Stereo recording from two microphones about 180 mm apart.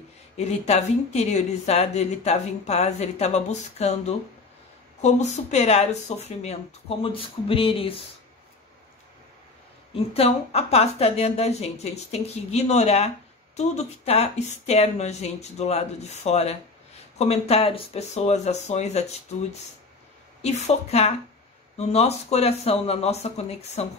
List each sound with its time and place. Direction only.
0.4 s speech: 40° left (ahead or behind)
9.9 s speech: 35° left (ahead or behind)
20.4 s speech: 40° left (ahead or behind)